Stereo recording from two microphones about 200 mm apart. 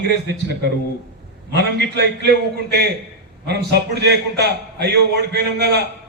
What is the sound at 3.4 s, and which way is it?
A man's voice, 55° right (ahead or behind).